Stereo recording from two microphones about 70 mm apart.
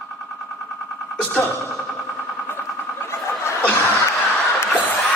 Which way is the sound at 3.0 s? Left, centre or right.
Left.